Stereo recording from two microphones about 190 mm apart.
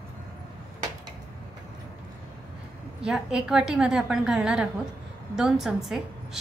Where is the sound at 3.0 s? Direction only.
5° right (ahead or behind).